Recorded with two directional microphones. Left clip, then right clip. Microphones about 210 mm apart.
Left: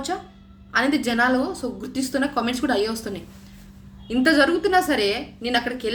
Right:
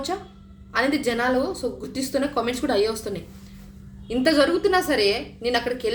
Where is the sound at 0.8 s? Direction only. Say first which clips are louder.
Left 2 dB; 5° left (ahead or behind).